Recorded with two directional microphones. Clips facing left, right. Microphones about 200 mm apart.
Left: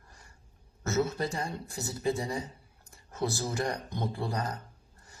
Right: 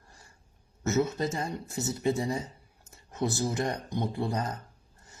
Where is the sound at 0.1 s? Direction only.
25° right (ahead or behind).